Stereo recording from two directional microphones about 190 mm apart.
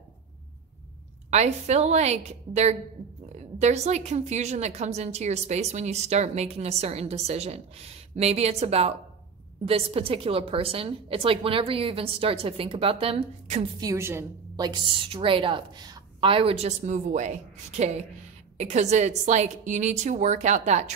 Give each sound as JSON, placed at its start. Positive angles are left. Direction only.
{"t": 1.3, "sound": "a woman's voice", "side_deg": -35}
{"t": 14.7, "sound": "a woman's voice", "side_deg": -30}